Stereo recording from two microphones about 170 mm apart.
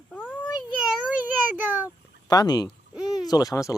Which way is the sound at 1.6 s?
10° right (ahead or behind).